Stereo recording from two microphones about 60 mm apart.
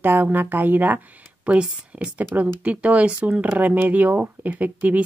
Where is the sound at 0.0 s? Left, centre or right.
Right.